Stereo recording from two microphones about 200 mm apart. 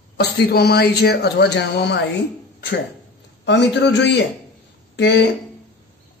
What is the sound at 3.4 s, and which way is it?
Speech, 60° left (ahead or behind).